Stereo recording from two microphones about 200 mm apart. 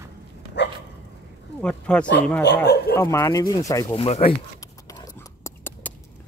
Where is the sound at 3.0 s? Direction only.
15° left (ahead or behind); by 4.3 s 30° left (ahead or behind).